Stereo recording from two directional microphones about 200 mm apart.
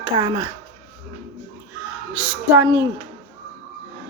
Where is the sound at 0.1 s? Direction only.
25° right (ahead or behind).